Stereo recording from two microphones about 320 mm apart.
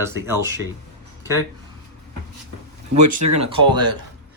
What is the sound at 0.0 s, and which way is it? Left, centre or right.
Speech, centre.